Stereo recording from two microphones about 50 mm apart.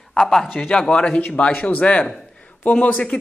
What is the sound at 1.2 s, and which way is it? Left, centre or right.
Speech, left.